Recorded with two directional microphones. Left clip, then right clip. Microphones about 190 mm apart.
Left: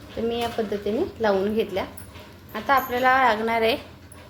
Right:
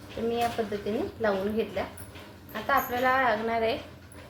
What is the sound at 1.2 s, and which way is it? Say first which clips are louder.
A woman's voice: left 5 dB; 45° left (ahead or behind).